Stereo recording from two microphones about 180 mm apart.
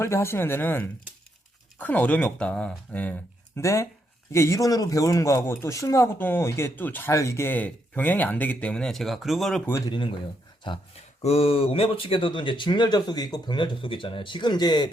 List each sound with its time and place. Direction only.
0.0 s speech: 15° left (ahead or behind)
9.7 s speech: 20° left (ahead or behind)